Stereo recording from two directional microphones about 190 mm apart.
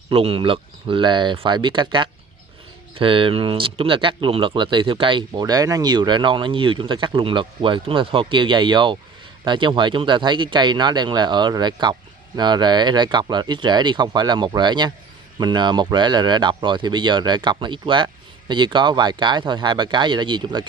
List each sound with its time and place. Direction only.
0.1 s speech: 30° right (ahead or behind)